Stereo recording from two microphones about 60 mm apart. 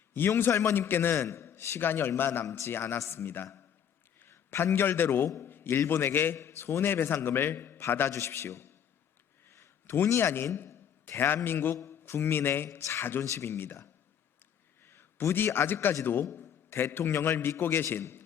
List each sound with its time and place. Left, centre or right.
0.2 s a man's voice: left
1.2 s a man's voice: left
2.5 s a man's voice: left
2.7 s a man's voice: left
5.4 s a sound: left
5.9 s a man's voice: left
9.8 s a man's voice: left
13.2 s speech: left
14.8 s a man's voice: left
16.3 s a sound: left
17.0 s a man's voice: left